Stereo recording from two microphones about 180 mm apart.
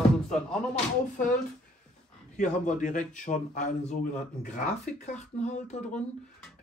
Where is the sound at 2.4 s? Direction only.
45° left (ahead or behind).